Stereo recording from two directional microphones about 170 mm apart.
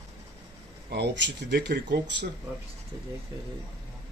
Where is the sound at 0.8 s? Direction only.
75° right (ahead or behind).